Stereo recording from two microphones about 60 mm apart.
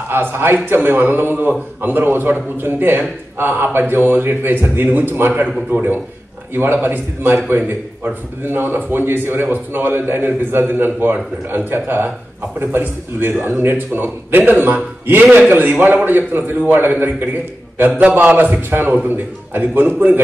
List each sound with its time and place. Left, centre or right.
0.1 s a man's voice: right